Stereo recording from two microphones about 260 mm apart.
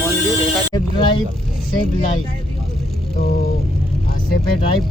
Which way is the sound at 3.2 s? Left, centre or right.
Left.